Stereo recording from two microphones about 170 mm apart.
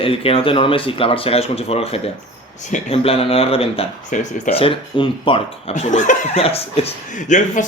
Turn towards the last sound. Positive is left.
turn(degrees=45)  # may be behind; listen again after turning